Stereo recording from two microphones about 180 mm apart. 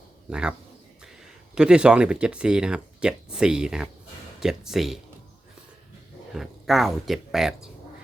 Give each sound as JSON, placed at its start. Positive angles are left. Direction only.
{"t": 0.3, "sound": "speech", "side_deg": -5}
{"t": 1.5, "sound": "speech", "side_deg": -5}
{"t": 6.3, "sound": "speech", "side_deg": 0}